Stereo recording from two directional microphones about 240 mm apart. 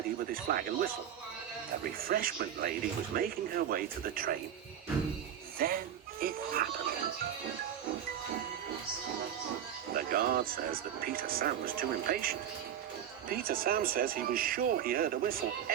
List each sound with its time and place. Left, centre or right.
0.4 s speech: right
2.0 s speech: right
5.5 s music: right
9.9 s speech: right